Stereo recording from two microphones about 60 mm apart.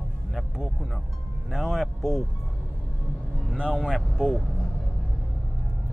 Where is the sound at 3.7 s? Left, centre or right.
Centre.